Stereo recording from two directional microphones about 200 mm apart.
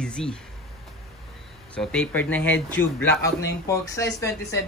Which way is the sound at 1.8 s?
5° left (ahead or behind).